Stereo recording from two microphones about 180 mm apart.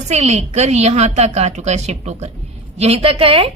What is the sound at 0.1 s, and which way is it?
A woman's voice, 35° right (ahead or behind).